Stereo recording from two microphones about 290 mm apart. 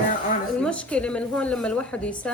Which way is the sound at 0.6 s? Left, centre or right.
Centre.